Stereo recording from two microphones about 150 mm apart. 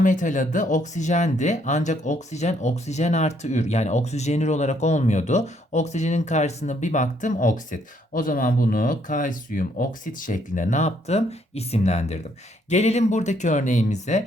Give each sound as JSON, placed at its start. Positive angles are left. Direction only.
{"t": 0.0, "sound": "speech", "side_deg": 55}